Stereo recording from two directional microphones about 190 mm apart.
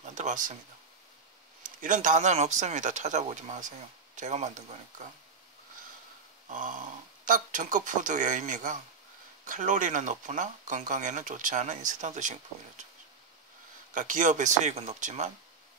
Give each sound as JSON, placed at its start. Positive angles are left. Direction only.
{"t": 0.0, "sound": "speech", "side_deg": -40}
{"t": 1.6, "sound": "speech", "side_deg": -45}
{"t": 6.5, "sound": "speech", "side_deg": -45}
{"t": 13.9, "sound": "speech", "side_deg": -45}